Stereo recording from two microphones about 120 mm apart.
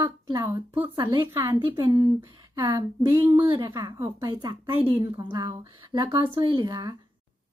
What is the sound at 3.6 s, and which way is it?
A woman's voice, 25° right (ahead or behind).